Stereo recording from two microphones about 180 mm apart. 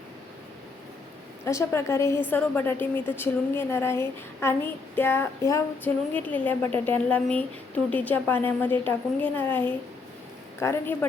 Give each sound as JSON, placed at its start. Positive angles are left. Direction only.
{"t": 1.5, "sound": "a woman's voice", "side_deg": 15}